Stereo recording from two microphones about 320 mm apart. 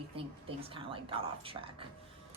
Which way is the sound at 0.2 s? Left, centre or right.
Centre.